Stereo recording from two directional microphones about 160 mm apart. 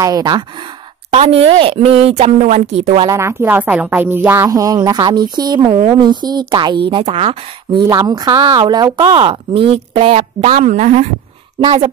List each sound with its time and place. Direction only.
0.0 s speech: 25° right (ahead or behind)
1.1 s speech: 40° right (ahead or behind)
3.1 s speech: 15° right (ahead or behind); by 11.1 s 50° right (ahead or behind)
11.6 s speech: 35° right (ahead or behind)